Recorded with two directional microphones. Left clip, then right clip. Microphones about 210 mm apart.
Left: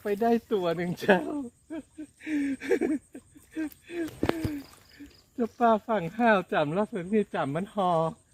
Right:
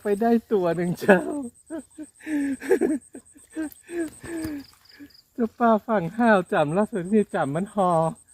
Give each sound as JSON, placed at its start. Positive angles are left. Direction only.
{"t": 0.0, "sound": "speech", "side_deg": -35}
{"t": 2.2, "sound": "a sound", "side_deg": -35}
{"t": 5.4, "sound": "speech", "side_deg": -35}